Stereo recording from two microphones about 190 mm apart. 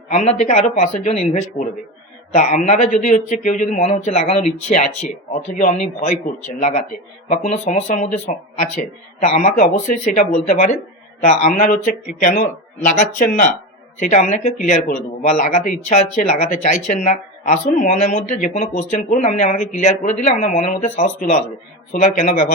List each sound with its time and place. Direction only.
0.1 s speech: 35° left (ahead or behind)